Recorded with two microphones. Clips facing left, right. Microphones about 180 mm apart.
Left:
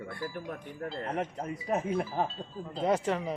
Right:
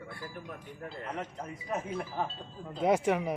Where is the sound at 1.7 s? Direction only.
40° left (ahead or behind).